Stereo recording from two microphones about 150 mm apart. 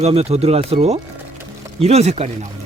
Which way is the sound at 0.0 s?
45° right (ahead or behind).